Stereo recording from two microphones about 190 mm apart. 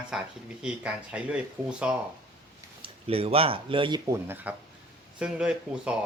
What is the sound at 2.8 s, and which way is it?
Speech, 30° right (ahead or behind).